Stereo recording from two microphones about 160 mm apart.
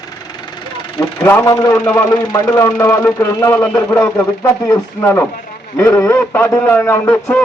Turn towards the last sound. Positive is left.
turn(degrees=15)  # may be behind; listen again after turning